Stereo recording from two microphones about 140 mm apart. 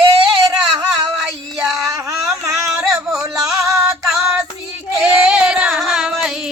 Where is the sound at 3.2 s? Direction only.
20° right (ahead or behind).